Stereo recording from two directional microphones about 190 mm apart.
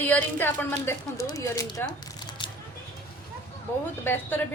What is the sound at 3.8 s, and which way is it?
Speech, 10° left (ahead or behind).